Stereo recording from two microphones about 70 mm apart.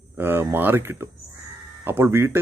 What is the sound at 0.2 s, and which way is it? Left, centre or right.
Speech, right.